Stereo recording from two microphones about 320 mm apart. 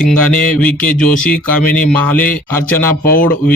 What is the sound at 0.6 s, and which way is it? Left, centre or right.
Speech, centre.